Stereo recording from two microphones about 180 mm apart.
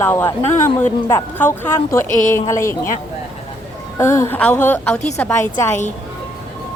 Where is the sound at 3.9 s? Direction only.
15° left (ahead or behind).